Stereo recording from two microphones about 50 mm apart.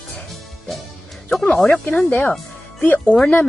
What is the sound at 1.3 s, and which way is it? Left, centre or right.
Speech, centre.